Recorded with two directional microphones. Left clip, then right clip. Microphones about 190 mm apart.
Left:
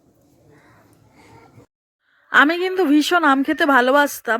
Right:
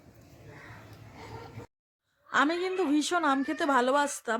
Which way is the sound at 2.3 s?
30° left (ahead or behind).